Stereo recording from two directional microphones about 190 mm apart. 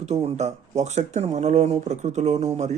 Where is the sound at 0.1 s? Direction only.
35° right (ahead or behind).